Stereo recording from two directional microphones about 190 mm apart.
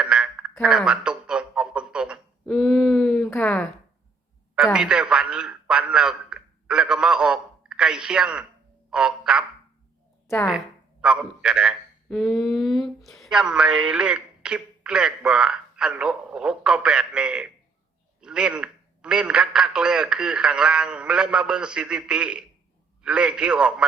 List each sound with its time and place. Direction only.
0.0 s a sound: 5° right (ahead or behind)
3.2 s speech: 10° left (ahead or behind)
4.5 s a man's voice: 5° right (ahead or behind)
8.9 s frog: 5° right (ahead or behind)
11.0 s a man's voice: 5° right (ahead or behind)